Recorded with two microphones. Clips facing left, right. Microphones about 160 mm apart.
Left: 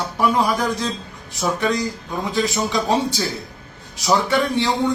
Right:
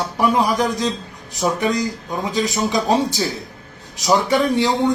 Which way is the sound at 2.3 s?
40° right (ahead or behind).